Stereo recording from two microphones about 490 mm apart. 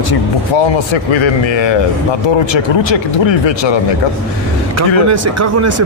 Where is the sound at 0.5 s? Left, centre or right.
Left.